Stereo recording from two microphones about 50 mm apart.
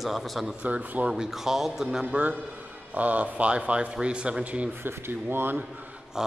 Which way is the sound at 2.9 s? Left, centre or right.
Right.